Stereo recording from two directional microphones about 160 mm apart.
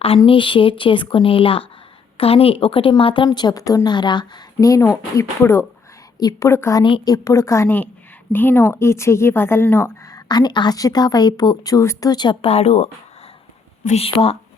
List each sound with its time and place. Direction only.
0.2 s a woman's voice: 30° left (ahead or behind)
6.8 s a woman's voice: 25° left (ahead or behind)
10.2 s a woman's voice: 25° left (ahead or behind)